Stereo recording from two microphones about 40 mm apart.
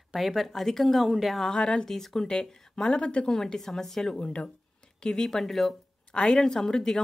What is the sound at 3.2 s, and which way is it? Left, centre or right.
Speech, centre.